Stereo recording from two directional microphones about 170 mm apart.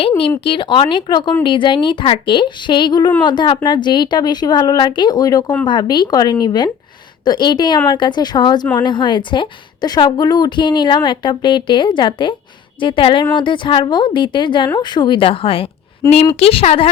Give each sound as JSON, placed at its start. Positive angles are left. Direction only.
{"t": 0.2, "sound": "a woman's voice", "side_deg": 30}